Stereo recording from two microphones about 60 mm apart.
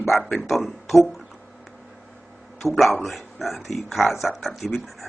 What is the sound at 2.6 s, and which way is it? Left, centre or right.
Speech, centre.